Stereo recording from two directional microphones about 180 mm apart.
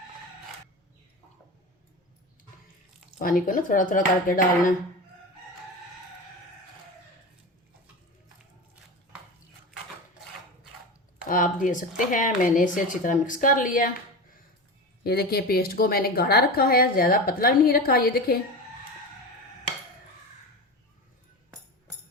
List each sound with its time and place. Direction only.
3.2 s speech: 50° left (ahead or behind)
11.3 s speech: 50° left (ahead or behind)
15.0 s a woman's voice: 60° left (ahead or behind)